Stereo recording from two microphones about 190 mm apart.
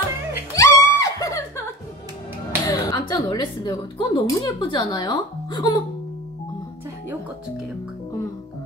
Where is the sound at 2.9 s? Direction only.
20° left (ahead or behind).